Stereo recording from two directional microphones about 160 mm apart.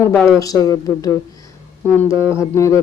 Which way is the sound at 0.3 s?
25° left (ahead or behind).